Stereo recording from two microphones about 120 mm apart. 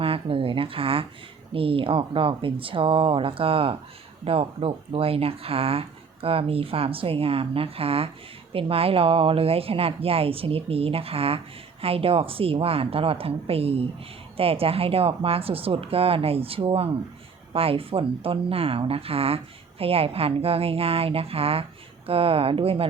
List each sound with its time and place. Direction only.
0.0 s a woman's voice: 50° right (ahead or behind)